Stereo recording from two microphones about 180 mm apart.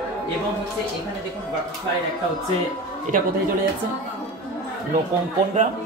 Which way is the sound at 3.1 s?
45° right (ahead or behind).